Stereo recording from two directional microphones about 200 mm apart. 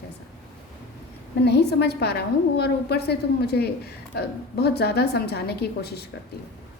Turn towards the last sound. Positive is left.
turn(degrees=55)  # may be behind; listen again after turning